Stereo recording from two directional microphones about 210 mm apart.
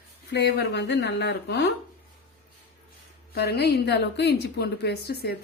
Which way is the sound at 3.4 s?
50° left (ahead or behind).